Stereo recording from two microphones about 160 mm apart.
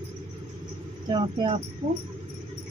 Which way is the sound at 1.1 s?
30° right (ahead or behind).